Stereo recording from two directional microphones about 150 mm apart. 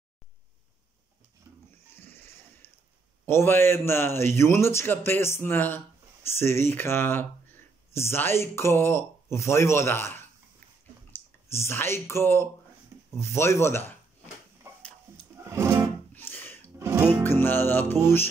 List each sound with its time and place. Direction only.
2.0 s a sound: 15° left (ahead or behind)
3.3 s a man's voice: 15° left (ahead or behind)
11.5 s a man's voice: 15° left (ahead or behind)
15.1 s music: 15° right (ahead or behind)
16.2 s a sound: 15° left (ahead or behind)
16.7 s music: 20° right (ahead or behind)
17.2 s music: 15° left (ahead or behind)